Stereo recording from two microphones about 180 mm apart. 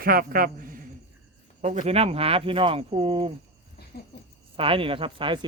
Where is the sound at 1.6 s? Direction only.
40° right (ahead or behind).